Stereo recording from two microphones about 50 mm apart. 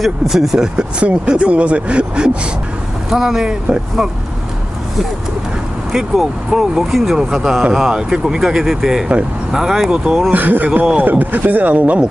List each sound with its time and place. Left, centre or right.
0.0 s speech: centre
0.7 s speech: right
3.1 s speech: centre
5.9 s speech: centre
7.9 s speech: centre
10.3 s speech: right